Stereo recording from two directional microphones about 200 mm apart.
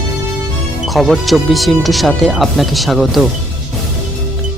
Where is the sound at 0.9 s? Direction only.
Centre (ahead or behind).